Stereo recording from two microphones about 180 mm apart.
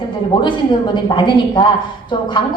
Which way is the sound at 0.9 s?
25° left (ahead or behind).